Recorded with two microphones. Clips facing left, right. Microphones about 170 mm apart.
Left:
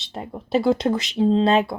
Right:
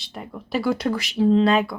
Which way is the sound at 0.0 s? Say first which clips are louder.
Left 3 dB; 30° left (ahead or behind).